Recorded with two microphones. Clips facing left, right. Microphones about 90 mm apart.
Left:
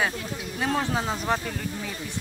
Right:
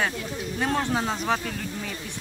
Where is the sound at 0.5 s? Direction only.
Centre (ahead or behind).